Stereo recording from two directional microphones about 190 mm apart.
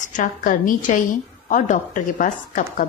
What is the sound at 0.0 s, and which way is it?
A woman's voice, 45° left (ahead or behind).